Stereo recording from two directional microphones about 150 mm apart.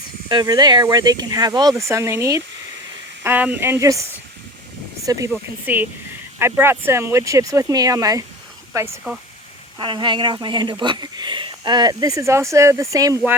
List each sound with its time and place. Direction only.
0.3 s speech: 30° right (ahead or behind)
5.3 s speech: 10° right (ahead or behind)
9.7 s speech: 30° right (ahead or behind)